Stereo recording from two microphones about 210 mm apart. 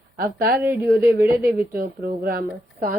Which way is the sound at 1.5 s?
45° right (ahead or behind).